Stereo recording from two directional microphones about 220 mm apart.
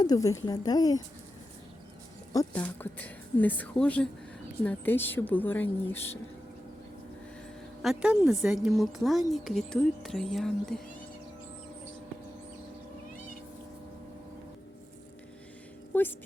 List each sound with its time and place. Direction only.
0.0 s a woman's voice: 15° left (ahead or behind)
2.3 s a woman's voice: 10° left (ahead or behind)
7.8 s speech: 5° right (ahead or behind)
15.9 s a sound: 10° left (ahead or behind)